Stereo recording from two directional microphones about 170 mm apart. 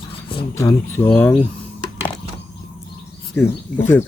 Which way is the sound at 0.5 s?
20° left (ahead or behind).